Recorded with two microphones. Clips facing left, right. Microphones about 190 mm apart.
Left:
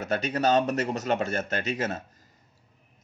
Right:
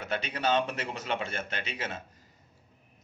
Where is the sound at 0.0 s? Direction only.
40° left (ahead or behind).